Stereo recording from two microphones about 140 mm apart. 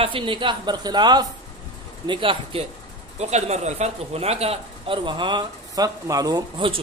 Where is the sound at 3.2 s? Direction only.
50° right (ahead or behind); by 6.6 s 25° right (ahead or behind).